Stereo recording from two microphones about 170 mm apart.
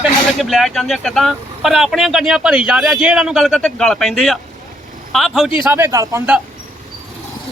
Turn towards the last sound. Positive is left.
turn(degrees=-10)  # may be behind; listen again after turning